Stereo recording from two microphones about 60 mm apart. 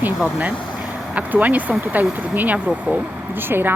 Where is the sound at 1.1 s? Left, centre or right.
Right.